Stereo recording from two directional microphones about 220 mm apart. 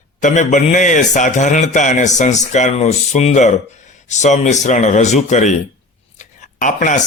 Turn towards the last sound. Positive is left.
turn(degrees=35)  # may be behind; listen again after turning